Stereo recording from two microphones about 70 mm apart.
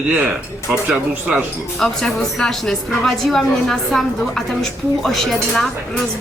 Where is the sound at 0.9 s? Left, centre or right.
Centre.